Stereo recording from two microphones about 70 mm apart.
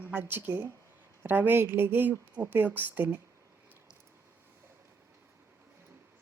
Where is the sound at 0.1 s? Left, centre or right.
Right.